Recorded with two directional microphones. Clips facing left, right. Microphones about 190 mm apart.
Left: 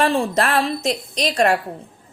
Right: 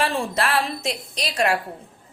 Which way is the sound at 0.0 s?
40° left (ahead or behind).